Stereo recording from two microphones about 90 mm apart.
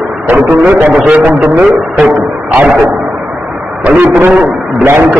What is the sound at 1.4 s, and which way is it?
Speech, 5° right (ahead or behind).